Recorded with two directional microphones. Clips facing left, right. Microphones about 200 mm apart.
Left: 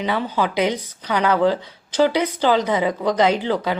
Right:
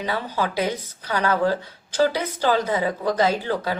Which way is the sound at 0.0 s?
20° left (ahead or behind).